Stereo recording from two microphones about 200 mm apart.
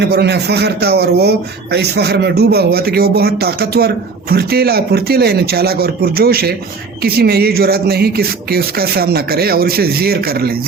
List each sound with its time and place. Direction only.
0.0 s a man's voice: 55° right (ahead or behind)